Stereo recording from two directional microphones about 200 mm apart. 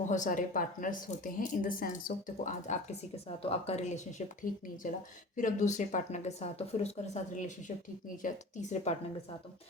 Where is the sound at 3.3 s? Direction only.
30° left (ahead or behind).